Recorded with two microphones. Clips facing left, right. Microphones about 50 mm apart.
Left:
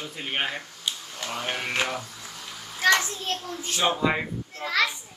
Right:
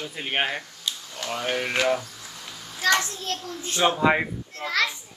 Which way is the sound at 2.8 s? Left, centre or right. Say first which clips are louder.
Left 1 dB; left.